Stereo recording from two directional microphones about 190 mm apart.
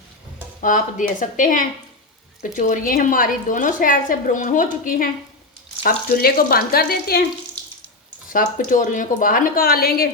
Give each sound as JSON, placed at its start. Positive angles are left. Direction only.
{"t": 0.6, "sound": "a woman's voice", "side_deg": 45}
{"t": 8.3, "sound": "a woman's voice", "side_deg": 45}